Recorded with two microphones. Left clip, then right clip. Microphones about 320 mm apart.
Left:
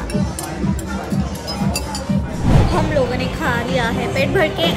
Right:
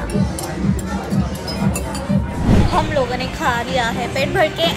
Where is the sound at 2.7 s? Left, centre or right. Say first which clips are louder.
Even; centre.